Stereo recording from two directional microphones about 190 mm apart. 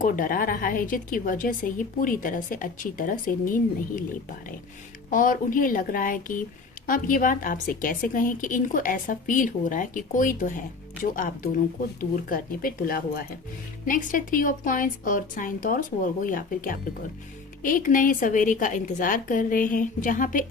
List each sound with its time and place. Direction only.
0.0 s a woman's voice: 45° left (ahead or behind)
5.1 s a woman's voice: 45° left (ahead or behind)